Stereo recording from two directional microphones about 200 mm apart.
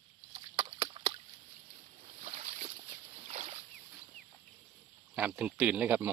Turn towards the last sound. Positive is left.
turn(degrees=-10)  # may be behind; listen again after turning